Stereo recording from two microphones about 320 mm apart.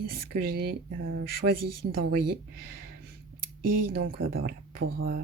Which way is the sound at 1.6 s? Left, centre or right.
Right.